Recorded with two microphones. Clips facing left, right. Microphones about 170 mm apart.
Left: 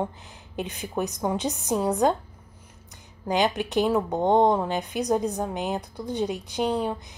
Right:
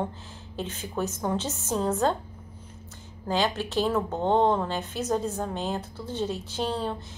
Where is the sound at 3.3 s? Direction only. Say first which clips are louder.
Left 3 dB; 15° left (ahead or behind).